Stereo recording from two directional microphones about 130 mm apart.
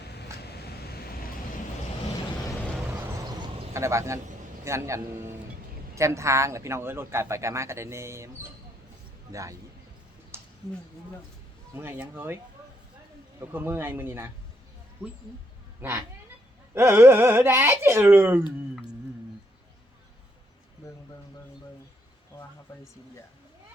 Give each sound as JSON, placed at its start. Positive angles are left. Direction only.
{"t": 3.8, "sound": "speech", "side_deg": -20}
{"t": 10.3, "sound": "a sound", "side_deg": -20}
{"t": 11.7, "sound": "speech", "side_deg": -15}
{"t": 13.4, "sound": "speech", "side_deg": -15}
{"t": 15.8, "sound": "speech", "side_deg": -20}